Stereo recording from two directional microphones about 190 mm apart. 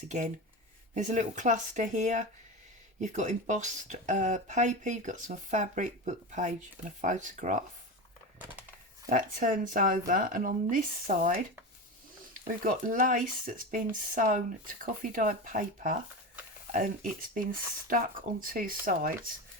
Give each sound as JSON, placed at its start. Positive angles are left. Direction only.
{"t": 0.9, "sound": "speech", "side_deg": -40}
{"t": 9.0, "sound": "speech", "side_deg": -45}